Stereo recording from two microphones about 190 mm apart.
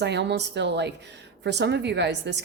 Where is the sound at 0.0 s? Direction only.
65° right (ahead or behind).